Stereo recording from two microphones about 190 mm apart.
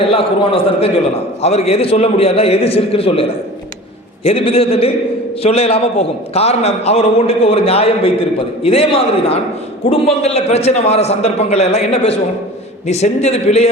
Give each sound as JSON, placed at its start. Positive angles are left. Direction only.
{"t": 0.0, "sound": "a man's voice", "side_deg": 30}